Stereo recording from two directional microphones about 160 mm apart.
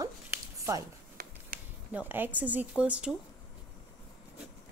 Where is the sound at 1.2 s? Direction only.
65° right (ahead or behind).